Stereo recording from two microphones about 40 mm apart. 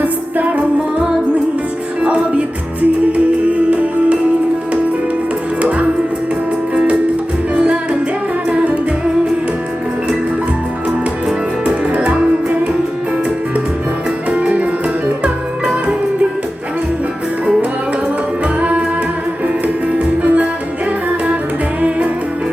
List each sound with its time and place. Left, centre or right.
0.0 s music: right
7.5 s music: right
11.6 s music: right
14.3 s music: right
18.4 s music: right
21.8 s music: right